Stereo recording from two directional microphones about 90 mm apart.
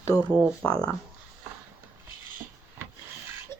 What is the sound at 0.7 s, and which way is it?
Speech, 80° right.